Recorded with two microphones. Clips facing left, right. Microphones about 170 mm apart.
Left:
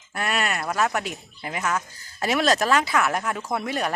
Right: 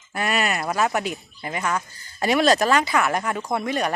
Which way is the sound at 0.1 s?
Centre (ahead or behind).